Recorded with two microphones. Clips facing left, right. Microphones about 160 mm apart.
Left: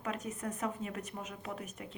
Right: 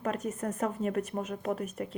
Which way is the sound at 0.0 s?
50° right (ahead or behind).